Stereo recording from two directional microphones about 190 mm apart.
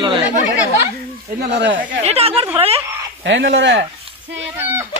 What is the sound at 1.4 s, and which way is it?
Speech, 60° right (ahead or behind).